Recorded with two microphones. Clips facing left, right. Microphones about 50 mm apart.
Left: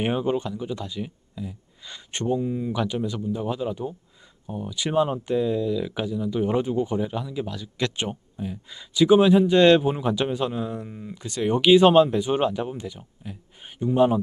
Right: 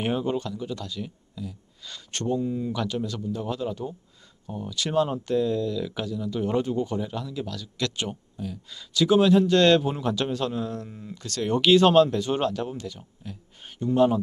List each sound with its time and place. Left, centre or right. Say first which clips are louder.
0.0 s speech: left 2 dB; centre